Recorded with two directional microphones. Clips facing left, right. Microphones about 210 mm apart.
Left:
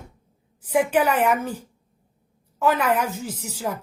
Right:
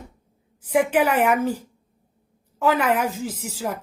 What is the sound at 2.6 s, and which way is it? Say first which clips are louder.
Speech: right 1 dB; 5° right (ahead or behind).